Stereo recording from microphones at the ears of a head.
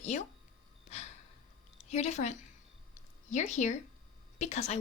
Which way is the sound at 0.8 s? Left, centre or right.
Left.